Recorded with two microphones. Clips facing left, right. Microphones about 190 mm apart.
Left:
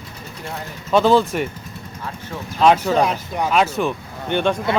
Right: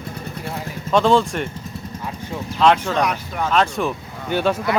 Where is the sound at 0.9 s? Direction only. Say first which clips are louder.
Left 1 dB; 5° left (ahead or behind).